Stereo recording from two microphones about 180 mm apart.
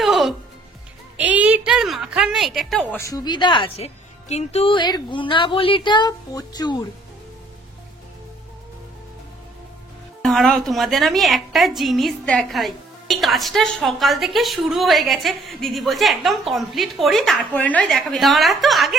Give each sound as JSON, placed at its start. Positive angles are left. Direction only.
{"t": 0.0, "sound": "music", "side_deg": 0}
{"t": 1.1, "sound": "a woman's voice", "side_deg": -10}
{"t": 3.0, "sound": "a woman's voice", "side_deg": 20}
{"t": 10.2, "sound": "a woman's voice", "side_deg": 0}